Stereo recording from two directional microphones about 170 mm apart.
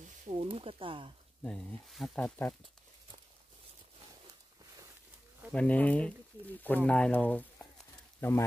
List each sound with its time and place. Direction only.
0.0 s speech: 40° right (ahead or behind)
1.4 s speech: 5° left (ahead or behind)
5.5 s speech: 5° left (ahead or behind)